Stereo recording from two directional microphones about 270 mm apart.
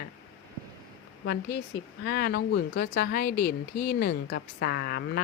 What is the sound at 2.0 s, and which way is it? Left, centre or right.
Speech, left.